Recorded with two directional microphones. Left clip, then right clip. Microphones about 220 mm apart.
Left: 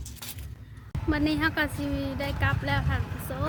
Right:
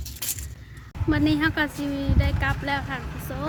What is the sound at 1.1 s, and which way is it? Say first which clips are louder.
A woman's voice: right 4 dB; centre (ahead or behind).